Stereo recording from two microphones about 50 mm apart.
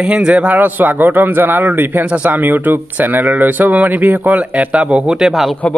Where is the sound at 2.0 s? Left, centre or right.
Right.